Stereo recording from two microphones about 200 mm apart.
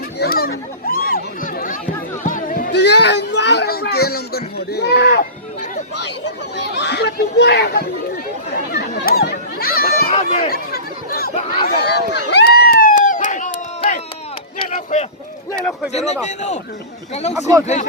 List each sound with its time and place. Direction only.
0.2 s a sound: 50° left (ahead or behind)
6.0 s speech: 60° left (ahead or behind)
8.4 s chatter: 50° left (ahead or behind)
10.1 s speech: 35° left (ahead or behind)
10.5 s chatter: 50° left (ahead or behind)
11.7 s a sound: 55° left (ahead or behind); by 15.0 s 35° left (ahead or behind)
16.2 s speech: 35° left (ahead or behind)